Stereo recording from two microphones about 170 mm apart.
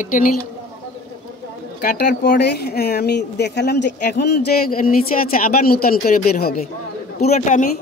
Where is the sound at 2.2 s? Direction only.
75° left (ahead or behind).